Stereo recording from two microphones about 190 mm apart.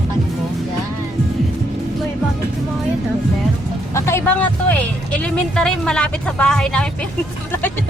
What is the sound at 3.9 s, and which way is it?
Speech, 15° left (ahead or behind).